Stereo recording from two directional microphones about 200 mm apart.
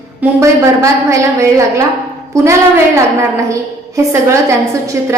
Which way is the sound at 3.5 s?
15° right (ahead or behind).